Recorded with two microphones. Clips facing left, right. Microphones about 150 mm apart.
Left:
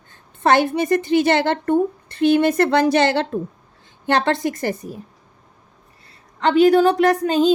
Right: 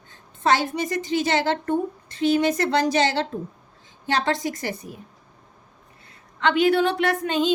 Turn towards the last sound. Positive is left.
turn(degrees=40)  # may be behind; listen again after turning